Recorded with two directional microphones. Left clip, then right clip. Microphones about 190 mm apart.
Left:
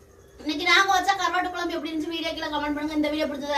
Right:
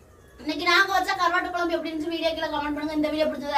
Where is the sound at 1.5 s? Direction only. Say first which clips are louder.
Right 2 dB; 10° right (ahead or behind).